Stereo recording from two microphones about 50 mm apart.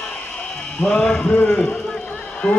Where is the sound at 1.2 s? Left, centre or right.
Left.